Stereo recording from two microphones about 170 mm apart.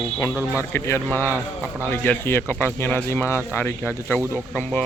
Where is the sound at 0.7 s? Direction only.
15° left (ahead or behind).